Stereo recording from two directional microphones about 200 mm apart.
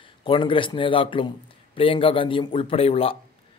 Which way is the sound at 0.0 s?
25° left (ahead or behind).